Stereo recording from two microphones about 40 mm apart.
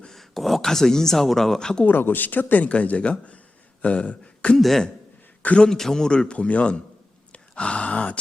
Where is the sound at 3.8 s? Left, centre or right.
Left.